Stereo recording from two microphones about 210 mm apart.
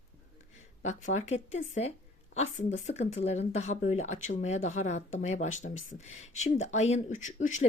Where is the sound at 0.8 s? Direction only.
35° left (ahead or behind).